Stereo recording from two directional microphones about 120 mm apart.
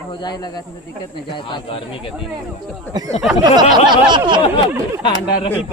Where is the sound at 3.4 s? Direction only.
35° right (ahead or behind).